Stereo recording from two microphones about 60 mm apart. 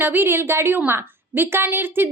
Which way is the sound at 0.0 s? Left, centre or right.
Right.